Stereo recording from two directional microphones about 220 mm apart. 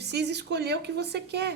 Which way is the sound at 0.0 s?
50° right (ahead or behind).